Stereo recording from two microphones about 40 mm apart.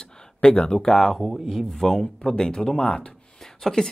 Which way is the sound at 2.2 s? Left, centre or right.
Centre.